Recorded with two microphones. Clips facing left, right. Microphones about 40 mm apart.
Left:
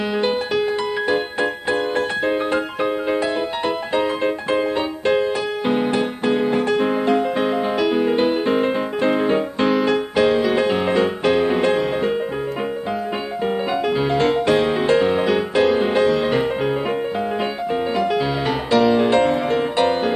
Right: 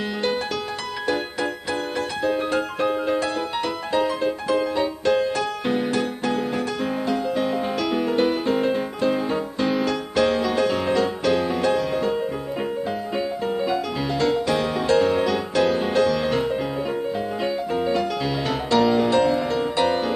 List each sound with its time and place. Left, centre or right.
1.0 s music: left
10.1 s music: centre; by 12.1 s left
13.7 s music: left
17.9 s music: left
18.7 s music: centre
18.9 s music: left